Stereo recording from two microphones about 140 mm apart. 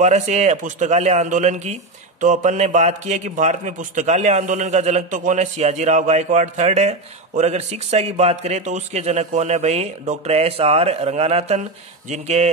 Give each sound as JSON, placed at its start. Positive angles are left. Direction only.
{"t": 0.0, "sound": "a man's voice", "side_deg": -55}